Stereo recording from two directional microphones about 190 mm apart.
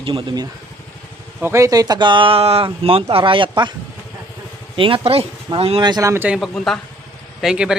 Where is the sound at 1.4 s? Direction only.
15° right (ahead or behind).